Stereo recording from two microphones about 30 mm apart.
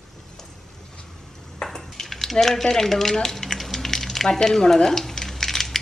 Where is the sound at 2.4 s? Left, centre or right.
Centre.